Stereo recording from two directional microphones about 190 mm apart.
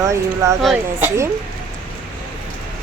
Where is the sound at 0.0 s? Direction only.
15° right (ahead or behind).